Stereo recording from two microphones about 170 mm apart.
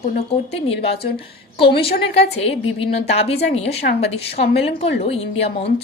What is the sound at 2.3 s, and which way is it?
Speech, 35° left (ahead or behind).